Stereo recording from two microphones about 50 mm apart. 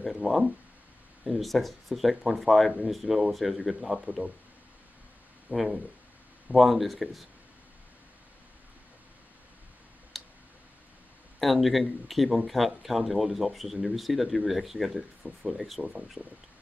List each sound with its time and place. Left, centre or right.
0.2 s speech: right
1.2 s speech: centre
5.5 s speech: centre
10.1 s tick: centre
11.3 s speech: centre